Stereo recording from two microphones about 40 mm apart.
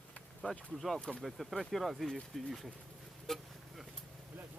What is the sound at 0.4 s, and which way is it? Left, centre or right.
Speech, left.